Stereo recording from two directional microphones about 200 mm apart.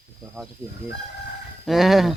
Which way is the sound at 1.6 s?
Centre (ahead or behind).